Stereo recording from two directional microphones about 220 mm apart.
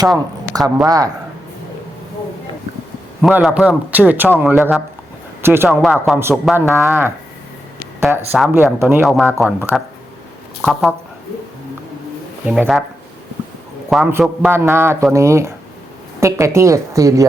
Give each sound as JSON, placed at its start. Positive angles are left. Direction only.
{"t": 0.5, "sound": "a man's voice", "side_deg": -15}
{"t": 3.2, "sound": "a man's voice", "side_deg": 0}
{"t": 8.3, "sound": "a man's voice", "side_deg": -10}
{"t": 12.5, "sound": "speech", "side_deg": -5}
{"t": 13.9, "sound": "a man's voice", "side_deg": -10}